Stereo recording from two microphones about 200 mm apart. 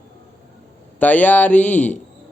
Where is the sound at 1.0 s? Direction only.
10° left (ahead or behind).